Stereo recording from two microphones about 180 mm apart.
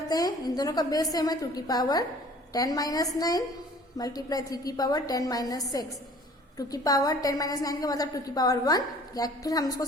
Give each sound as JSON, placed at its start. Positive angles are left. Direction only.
{"t": 0.1, "sound": "a woman's voice", "side_deg": 20}